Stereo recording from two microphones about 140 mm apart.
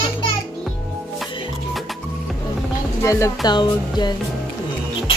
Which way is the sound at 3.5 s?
30° left (ahead or behind).